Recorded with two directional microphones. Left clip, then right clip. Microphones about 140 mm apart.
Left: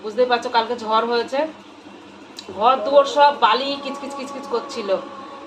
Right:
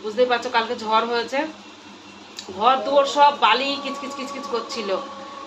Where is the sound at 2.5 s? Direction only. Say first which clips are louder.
Left 3 dB; 5° right (ahead or behind).